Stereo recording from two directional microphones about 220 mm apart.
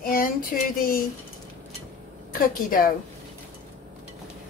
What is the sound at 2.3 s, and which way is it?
Speech, 40° left (ahead or behind).